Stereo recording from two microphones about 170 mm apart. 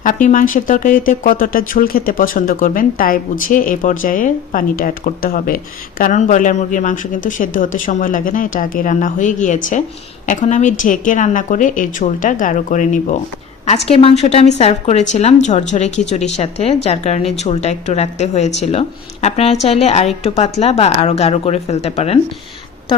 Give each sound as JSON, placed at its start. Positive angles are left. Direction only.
{"t": 0.0, "sound": "speech", "side_deg": 50}
{"t": 13.7, "sound": "a woman's voice", "side_deg": 40}